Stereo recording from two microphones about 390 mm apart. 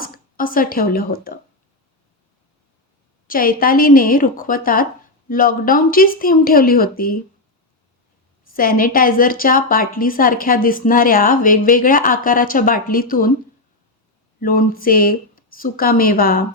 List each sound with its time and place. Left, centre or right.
0.0 s speech: left
3.2 s a woman's voice: left
8.5 s a woman's voice: left
14.4 s a woman's voice: left